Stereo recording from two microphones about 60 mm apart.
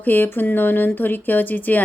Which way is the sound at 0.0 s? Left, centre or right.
Left.